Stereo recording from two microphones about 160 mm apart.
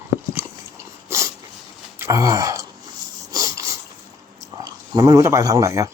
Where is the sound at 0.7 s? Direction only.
20° right (ahead or behind).